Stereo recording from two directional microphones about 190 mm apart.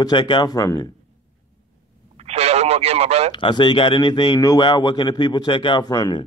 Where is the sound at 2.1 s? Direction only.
35° right (ahead or behind).